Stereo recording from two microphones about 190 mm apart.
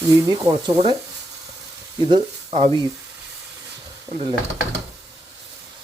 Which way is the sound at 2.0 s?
25° right (ahead or behind).